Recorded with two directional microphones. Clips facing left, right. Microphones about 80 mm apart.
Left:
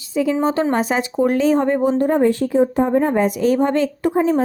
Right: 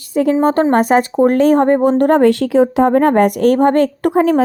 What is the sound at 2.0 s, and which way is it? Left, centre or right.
Speech, right.